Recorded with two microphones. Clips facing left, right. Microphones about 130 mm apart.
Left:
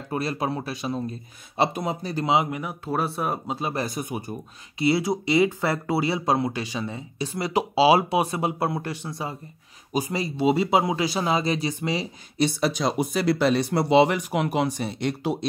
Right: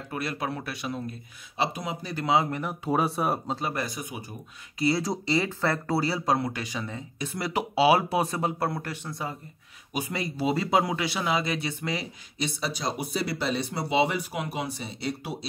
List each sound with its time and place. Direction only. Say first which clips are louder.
0.1 s speech: left 5 dB; 30° left (ahead or behind)
1.6 s speech: left 5 dB; 50° left (ahead or behind)
2.2 s speech: left 1 dB; 20° left (ahead or behind)
2.5 s speech: right 1 dB; 5° left (ahead or behind)
3.5 s speech: left 3 dB; 25° left (ahead or behind)
3.8 s speech: left 5 dB; 50° left (ahead or behind)
5.1 s speech: left 6 dB; 15° left (ahead or behind)
9.9 s speech: left 5 dB; 30° left (ahead or behind)
10.4 s speech: left 4 dB; 20° left (ahead or behind)
11.0 s speech: left 4 dB; 35° left (ahead or behind)
12.4 s speech: left 8 dB; 70° left (ahead or behind)